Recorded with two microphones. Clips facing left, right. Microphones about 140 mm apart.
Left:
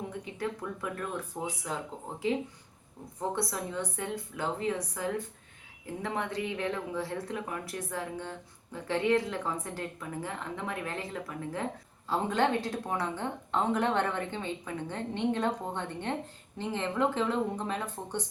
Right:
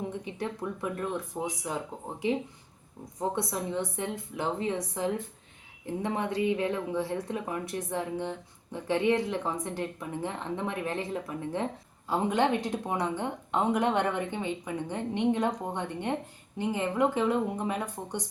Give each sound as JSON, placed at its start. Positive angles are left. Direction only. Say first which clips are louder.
{"t": 0.1, "sound": "speech", "louder": "right 1 dB", "side_deg": -20}
{"t": 3.2, "sound": "a woman's voice", "louder": "right 2 dB", "side_deg": -20}